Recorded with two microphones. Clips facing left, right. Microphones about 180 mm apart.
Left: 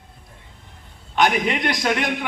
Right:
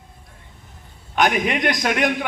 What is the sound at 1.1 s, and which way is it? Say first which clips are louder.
A man's voice: even; 50° right (ahead or behind).